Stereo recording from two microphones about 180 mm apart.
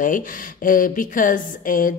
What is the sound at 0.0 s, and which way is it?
Speech, 50° left (ahead or behind).